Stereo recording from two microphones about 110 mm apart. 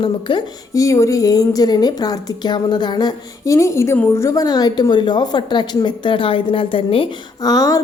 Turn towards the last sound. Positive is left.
turn(degrees=35)  # may be behind; listen again after turning